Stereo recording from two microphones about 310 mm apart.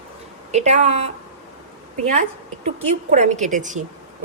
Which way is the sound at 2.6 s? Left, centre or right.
Right.